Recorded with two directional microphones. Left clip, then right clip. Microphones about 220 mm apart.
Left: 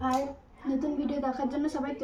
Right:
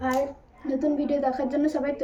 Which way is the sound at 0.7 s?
15° left (ahead or behind).